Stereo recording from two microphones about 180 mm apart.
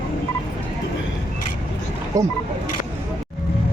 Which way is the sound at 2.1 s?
20° right (ahead or behind).